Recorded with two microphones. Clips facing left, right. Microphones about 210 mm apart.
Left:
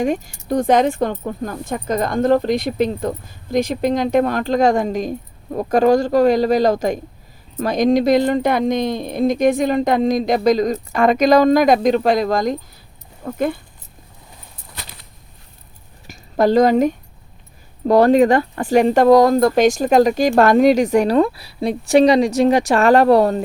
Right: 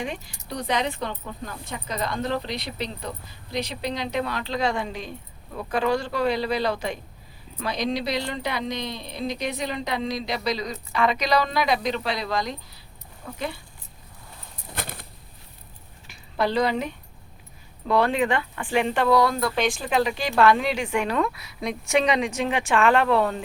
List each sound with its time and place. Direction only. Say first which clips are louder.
0.0 s speech: left 12 dB; 45° left (ahead or behind)
14.8 s a sound: right 6 dB; 50° right (ahead or behind)
16.0 s a woman's voice: left 10 dB; 45° left (ahead or behind)